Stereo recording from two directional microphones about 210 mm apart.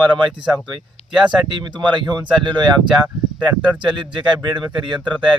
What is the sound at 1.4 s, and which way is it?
Speech, 20° right (ahead or behind).